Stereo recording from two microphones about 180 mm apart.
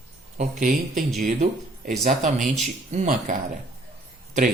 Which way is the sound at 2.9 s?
45° right (ahead or behind).